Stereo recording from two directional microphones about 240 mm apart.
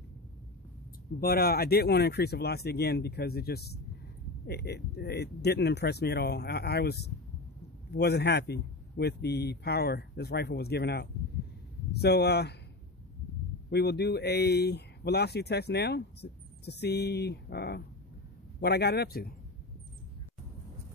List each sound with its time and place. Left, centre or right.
1.2 s speech: left
13.7 s speech: left